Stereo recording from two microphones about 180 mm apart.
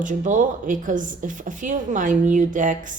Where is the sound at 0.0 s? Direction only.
45° right (ahead or behind).